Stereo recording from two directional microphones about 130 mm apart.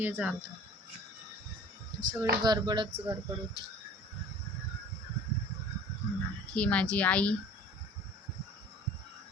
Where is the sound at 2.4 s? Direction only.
35° right (ahead or behind).